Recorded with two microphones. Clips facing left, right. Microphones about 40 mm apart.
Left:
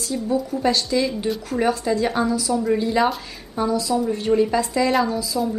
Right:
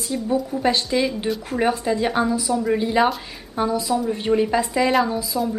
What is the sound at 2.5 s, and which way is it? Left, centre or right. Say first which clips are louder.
Speech: left 1 dB; centre.